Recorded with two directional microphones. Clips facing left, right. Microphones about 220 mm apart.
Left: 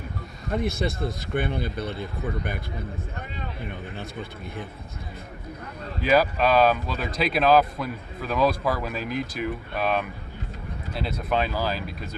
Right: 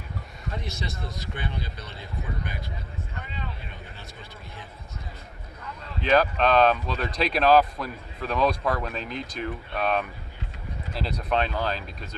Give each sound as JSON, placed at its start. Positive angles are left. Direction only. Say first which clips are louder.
{"t": 0.5, "sound": "a man's voice", "louder": "left 10 dB", "side_deg": 55}
{"t": 3.9, "sound": "a man's voice", "louder": "left 9 dB", "side_deg": 55}
{"t": 6.0, "sound": "speech", "louder": "left 1 dB", "side_deg": 5}